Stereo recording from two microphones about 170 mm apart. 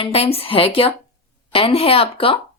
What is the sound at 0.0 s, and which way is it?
Speech, 35° left (ahead or behind).